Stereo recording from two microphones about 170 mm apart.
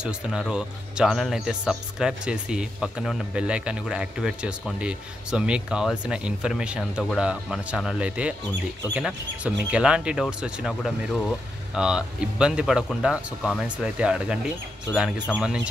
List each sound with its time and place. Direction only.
0.0 s speech: 5° right (ahead or behind)